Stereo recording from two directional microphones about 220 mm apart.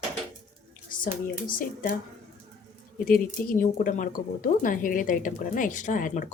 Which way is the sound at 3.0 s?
40° left (ahead or behind).